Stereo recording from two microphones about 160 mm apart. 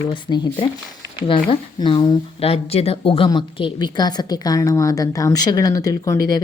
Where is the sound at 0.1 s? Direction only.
30° left (ahead or behind).